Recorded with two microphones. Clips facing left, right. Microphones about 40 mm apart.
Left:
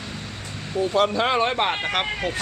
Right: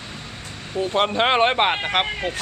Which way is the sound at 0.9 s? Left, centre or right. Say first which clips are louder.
Right 2 dB; right.